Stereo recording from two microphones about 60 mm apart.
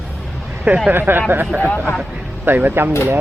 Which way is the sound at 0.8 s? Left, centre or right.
Right.